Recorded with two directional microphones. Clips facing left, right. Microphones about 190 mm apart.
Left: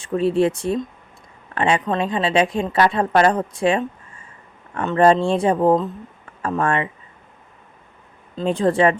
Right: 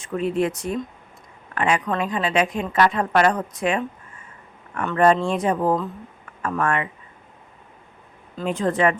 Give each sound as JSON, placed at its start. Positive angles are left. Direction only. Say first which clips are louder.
{"t": 0.0, "sound": "a woman's voice", "louder": "left 5 dB", "side_deg": 30}
{"t": 8.4, "sound": "speech", "louder": "left 4 dB", "side_deg": 30}